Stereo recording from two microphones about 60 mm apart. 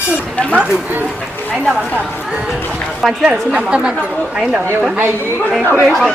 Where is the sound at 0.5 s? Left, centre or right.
Right.